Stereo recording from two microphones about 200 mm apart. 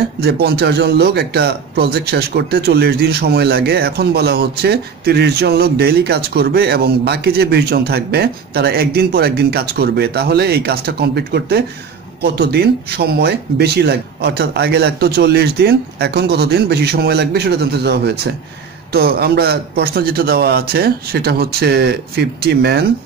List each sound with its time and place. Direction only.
0.2 s a man's voice: 55° right (ahead or behind)